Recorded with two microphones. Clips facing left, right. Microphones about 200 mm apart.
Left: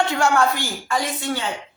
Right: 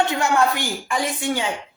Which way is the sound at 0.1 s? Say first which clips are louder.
Left 1 dB; 20° right (ahead or behind).